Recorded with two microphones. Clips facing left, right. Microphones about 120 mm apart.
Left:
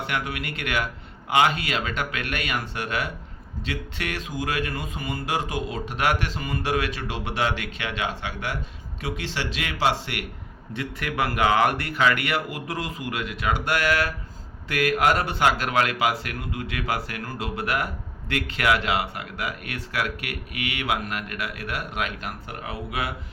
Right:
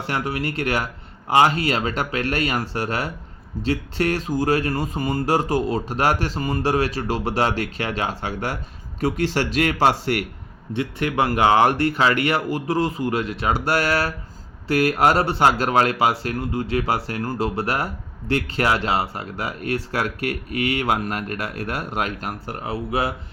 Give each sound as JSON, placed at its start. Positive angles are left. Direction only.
{"t": 0.1, "sound": "speech", "side_deg": -35}
{"t": 10.8, "sound": "speech", "side_deg": -30}